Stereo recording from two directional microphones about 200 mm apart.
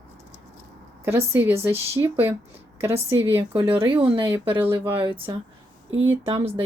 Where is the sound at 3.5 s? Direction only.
25° right (ahead or behind).